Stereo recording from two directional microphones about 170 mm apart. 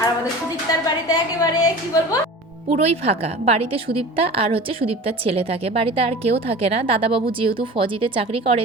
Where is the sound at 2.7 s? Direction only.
35° right (ahead or behind).